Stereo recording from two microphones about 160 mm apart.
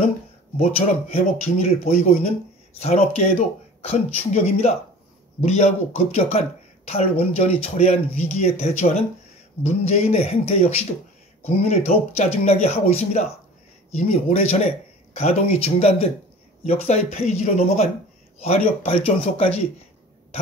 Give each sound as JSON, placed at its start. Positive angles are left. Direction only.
{"t": 0.6, "sound": "speech", "side_deg": 40}